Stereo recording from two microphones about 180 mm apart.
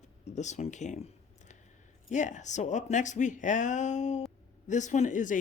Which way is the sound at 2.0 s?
40° left (ahead or behind).